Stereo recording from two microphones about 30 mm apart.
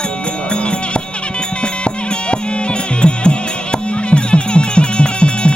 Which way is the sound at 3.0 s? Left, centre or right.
Left.